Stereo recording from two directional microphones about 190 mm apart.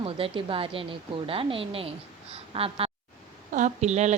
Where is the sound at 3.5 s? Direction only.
40° right (ahead or behind).